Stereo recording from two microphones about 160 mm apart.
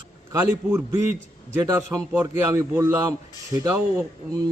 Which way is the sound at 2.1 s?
15° right (ahead or behind).